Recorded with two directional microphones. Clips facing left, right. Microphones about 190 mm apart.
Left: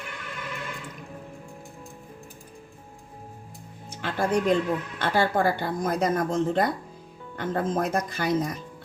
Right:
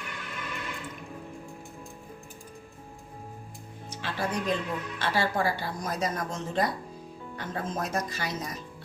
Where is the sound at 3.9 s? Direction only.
55° left (ahead or behind).